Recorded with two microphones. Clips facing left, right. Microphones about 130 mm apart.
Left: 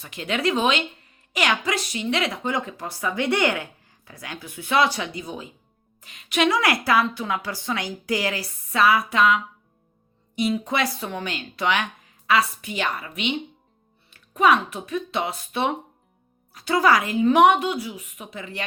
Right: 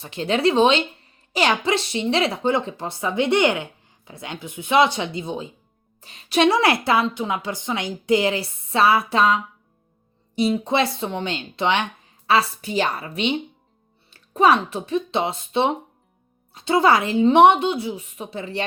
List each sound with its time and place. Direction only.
0.0 s speech: 30° right (ahead or behind)